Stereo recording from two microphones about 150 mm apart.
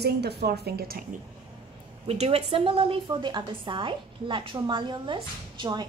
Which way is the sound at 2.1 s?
40° right (ahead or behind).